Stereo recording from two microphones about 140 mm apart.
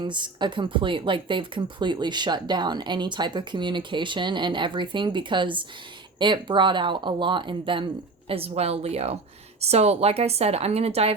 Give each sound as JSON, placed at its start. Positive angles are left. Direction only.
{"t": 0.0, "sound": "a woman's voice", "side_deg": -35}